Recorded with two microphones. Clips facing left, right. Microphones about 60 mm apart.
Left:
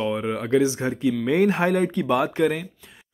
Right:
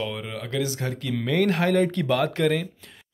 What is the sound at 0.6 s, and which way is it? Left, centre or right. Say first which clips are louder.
Speech: left 7 dB; left.